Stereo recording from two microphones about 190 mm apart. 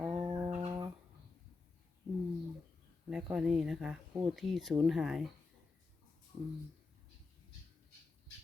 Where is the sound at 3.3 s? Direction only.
Centre (ahead or behind).